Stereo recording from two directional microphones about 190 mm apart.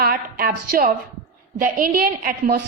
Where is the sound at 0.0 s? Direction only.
50° right (ahead or behind).